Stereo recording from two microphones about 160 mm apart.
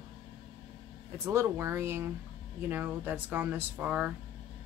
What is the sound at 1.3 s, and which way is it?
Speech, 15° right (ahead or behind).